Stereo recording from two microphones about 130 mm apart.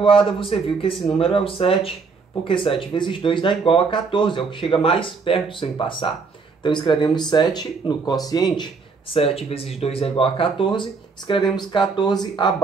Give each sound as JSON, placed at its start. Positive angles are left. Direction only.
{"t": 0.0, "sound": "speech", "side_deg": 45}
{"t": 9.1, "sound": "speech", "side_deg": 50}